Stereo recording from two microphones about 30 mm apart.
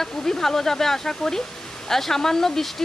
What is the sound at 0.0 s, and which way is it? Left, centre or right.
Speech, centre.